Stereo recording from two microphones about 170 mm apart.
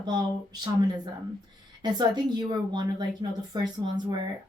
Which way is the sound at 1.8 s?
25° right (ahead or behind).